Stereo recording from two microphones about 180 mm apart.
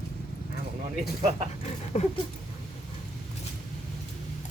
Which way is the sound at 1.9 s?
40° left (ahead or behind).